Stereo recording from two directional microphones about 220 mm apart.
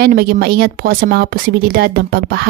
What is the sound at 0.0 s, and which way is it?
Speech, 45° right (ahead or behind).